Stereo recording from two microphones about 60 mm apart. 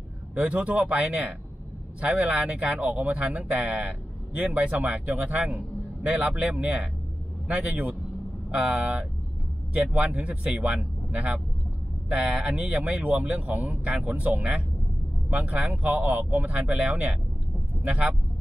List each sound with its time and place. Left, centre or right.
0.3 s speech: right